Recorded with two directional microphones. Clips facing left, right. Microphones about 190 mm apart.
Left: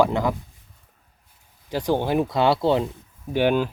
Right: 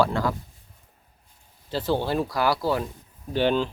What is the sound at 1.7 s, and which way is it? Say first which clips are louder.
Speech: left 3 dB; 15° left (ahead or behind).